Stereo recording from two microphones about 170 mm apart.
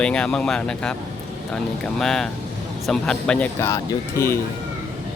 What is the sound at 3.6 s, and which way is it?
Speech, 15° left (ahead or behind).